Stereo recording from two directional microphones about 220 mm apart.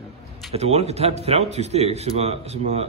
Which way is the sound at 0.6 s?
30° right (ahead or behind).